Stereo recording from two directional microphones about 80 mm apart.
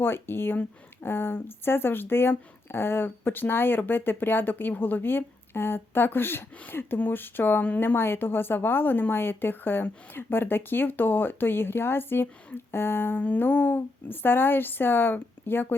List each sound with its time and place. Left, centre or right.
0.0 s speech: left